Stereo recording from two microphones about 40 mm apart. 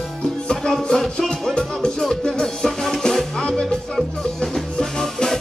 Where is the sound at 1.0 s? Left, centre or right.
Centre.